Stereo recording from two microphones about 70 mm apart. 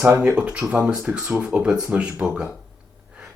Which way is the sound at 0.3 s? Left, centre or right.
Centre.